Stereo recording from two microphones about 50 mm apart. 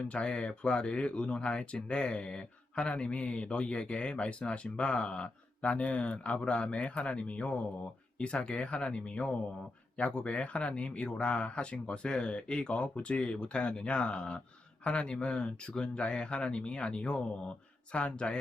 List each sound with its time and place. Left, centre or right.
0.0 s speech: left